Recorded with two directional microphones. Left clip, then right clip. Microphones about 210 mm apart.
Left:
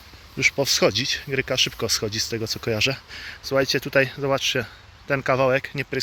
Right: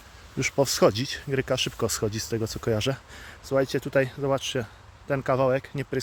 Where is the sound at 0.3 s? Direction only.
30° right (ahead or behind).